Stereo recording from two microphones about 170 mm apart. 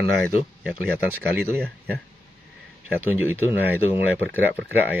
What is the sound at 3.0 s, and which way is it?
Speech, 10° right (ahead or behind).